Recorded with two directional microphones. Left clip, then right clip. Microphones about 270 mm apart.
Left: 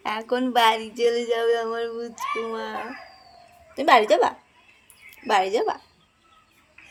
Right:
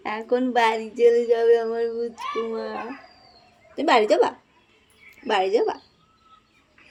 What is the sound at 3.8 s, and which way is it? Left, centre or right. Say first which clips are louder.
Speech: left 1 dB; centre.